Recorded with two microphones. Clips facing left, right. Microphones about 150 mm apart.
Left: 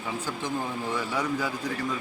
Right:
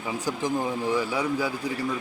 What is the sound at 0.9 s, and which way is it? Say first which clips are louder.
Speech: right 2 dB; 10° right (ahead or behind).